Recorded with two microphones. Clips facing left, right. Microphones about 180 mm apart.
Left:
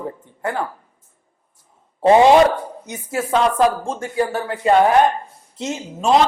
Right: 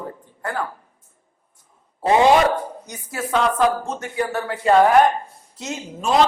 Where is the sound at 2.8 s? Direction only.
25° left (ahead or behind).